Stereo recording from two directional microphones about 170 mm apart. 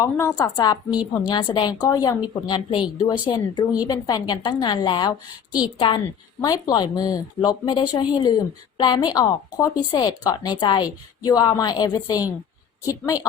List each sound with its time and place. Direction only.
0.0 s speech: 20° left (ahead or behind)
0.9 s a woman's voice: 5° right (ahead or behind)
1.3 s speech: 25° left (ahead or behind)
5.5 s a woman's voice: 5° right (ahead or behind)
6.4 s speech: 20° left (ahead or behind)